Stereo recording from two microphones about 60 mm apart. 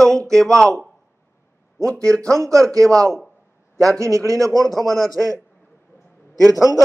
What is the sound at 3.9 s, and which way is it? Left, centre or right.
A man's voice, right.